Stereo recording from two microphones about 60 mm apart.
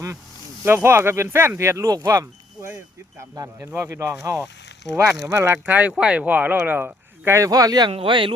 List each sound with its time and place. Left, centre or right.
0.6 s speech: right
1.9 s speech: right
2.1 s a sound: right
3.2 s speech: right
3.7 s speech: right
5.6 s speech: right
7.3 s speech: right